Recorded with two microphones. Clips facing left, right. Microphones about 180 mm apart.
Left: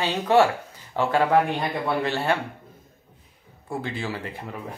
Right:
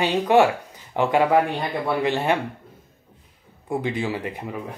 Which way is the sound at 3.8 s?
15° right (ahead or behind).